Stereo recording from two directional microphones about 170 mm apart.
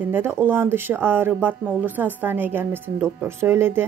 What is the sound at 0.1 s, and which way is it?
Speech, 15° right (ahead or behind).